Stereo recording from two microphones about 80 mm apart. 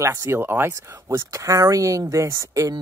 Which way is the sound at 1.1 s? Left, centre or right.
Right.